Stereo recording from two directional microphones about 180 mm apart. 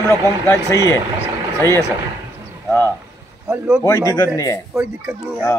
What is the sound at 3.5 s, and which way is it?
Speech, 5° right (ahead or behind).